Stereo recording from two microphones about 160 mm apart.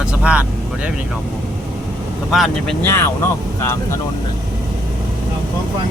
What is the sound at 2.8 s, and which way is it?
Speech, 15° left (ahead or behind).